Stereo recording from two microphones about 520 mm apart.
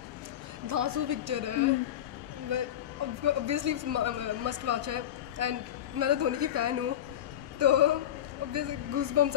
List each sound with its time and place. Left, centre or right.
0.7 s a woman's voice: right
3.3 s a man's voice: right